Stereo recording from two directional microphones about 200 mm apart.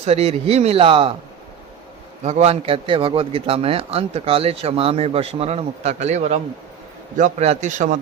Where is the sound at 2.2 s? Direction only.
35° right (ahead or behind).